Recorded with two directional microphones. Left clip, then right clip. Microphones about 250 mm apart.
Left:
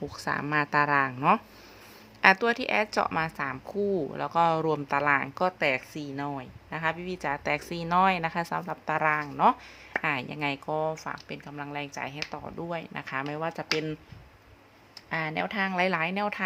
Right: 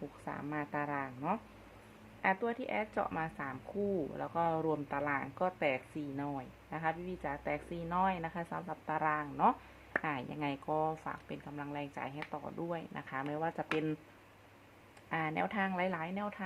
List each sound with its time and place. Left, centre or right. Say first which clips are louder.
0.3 s a woman's voice: left 13 dB; left
15.1 s speech: left 5 dB; centre